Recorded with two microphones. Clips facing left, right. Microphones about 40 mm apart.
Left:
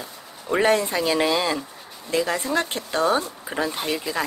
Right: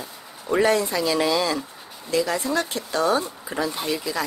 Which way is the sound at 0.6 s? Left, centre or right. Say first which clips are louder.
Left 1 dB; left.